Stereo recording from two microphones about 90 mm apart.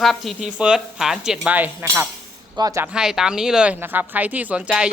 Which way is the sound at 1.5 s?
20° right (ahead or behind).